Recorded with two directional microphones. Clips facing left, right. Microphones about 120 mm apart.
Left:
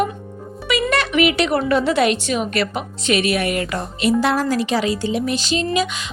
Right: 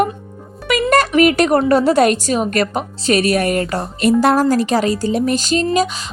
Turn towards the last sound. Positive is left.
turn(degrees=-40)  # may be behind; listen again after turning